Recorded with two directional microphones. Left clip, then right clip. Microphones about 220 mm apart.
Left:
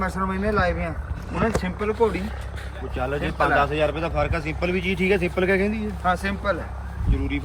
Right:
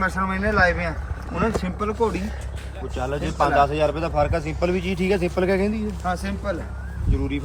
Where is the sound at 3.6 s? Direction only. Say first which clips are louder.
Right 1 dB; 30° right (ahead or behind).